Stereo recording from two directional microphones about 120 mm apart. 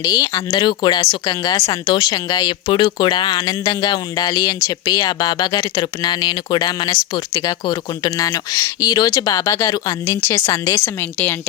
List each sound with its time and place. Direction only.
0.0 s speech: 30° left (ahead or behind)
10.8 s a woman's voice: 15° left (ahead or behind)